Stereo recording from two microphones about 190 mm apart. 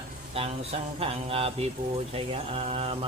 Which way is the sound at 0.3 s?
30° right (ahead or behind).